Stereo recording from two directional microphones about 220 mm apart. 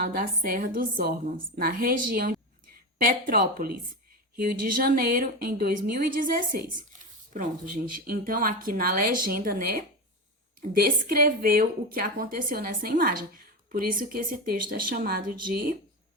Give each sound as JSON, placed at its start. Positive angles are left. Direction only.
{"t": 0.0, "sound": "speech", "side_deg": -40}